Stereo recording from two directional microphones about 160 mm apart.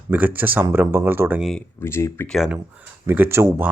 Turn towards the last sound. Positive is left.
turn(degrees=-15)  # may be behind; listen again after turning